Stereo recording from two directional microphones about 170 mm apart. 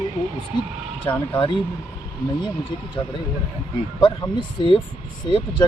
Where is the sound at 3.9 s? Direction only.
25° left (ahead or behind).